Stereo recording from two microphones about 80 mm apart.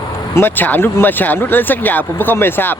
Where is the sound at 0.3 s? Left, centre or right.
Left.